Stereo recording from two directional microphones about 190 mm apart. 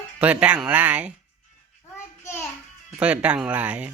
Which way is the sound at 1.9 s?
10° left (ahead or behind).